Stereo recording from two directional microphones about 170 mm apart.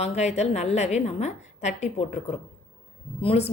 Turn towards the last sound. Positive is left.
turn(degrees=35)  # may be behind; listen again after turning